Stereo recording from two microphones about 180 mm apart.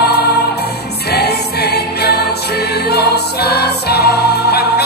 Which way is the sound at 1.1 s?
65° left (ahead or behind).